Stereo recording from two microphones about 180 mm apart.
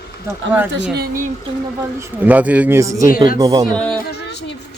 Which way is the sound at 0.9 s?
55° right (ahead or behind).